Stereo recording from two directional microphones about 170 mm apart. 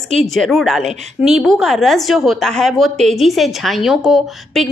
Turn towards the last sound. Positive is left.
turn(degrees=0)  # may be behind; listen again after turning